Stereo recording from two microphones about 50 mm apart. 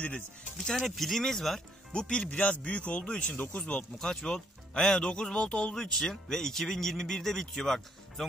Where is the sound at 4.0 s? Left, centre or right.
Centre.